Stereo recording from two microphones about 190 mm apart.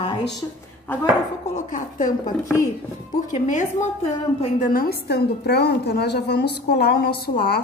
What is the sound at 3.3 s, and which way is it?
Speech, 40° left (ahead or behind).